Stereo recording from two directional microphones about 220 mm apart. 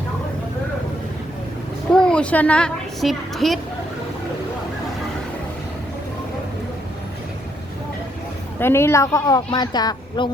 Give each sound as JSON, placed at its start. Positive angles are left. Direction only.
{"t": 2.0, "sound": "a woman's voice", "side_deg": 5}
{"t": 8.5, "sound": "a woman's voice", "side_deg": 10}